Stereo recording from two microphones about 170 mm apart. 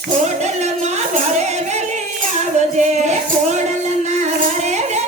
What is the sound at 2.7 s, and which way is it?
Music, 40° right (ahead or behind).